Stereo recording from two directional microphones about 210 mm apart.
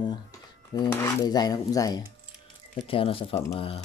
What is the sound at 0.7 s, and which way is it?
Speech, 20° left (ahead or behind).